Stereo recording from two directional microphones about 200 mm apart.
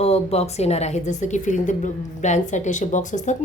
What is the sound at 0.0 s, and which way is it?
Speech, 30° left (ahead or behind).